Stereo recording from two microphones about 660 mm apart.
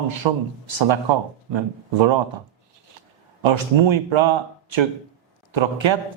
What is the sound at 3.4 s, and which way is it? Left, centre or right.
A man's voice, right.